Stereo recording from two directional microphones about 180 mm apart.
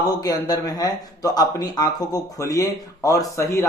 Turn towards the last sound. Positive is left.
turn(degrees=15)  # may be behind; listen again after turning